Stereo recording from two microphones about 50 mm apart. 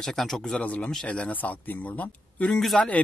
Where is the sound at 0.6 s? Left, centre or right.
Left.